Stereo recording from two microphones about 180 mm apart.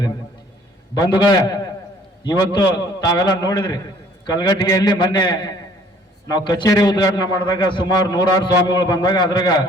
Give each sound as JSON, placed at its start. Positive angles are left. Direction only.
{"t": 0.9, "sound": "a man's voice", "side_deg": 20}